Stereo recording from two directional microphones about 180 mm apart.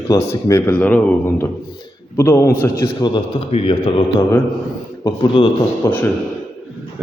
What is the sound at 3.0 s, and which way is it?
A man's voice, 30° left (ahead or behind).